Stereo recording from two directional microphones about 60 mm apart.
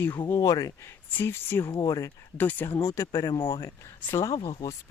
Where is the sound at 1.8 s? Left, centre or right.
Left.